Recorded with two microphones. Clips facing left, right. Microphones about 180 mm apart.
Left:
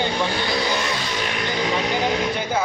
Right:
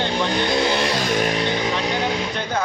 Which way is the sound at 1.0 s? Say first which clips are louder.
Right 6 dB; 45° right (ahead or behind).